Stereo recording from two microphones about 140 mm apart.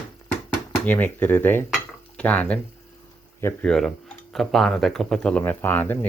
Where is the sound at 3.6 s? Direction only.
5° left (ahead or behind).